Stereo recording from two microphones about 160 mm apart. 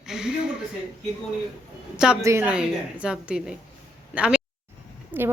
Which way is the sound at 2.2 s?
15° right (ahead or behind).